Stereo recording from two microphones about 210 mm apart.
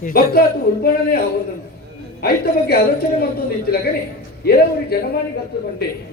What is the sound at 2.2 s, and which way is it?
Speech, 50° left (ahead or behind).